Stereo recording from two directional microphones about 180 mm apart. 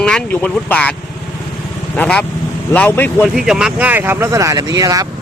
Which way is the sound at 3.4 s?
5° right (ahead or behind).